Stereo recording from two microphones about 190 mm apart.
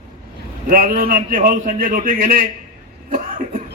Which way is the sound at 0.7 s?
50° right (ahead or behind).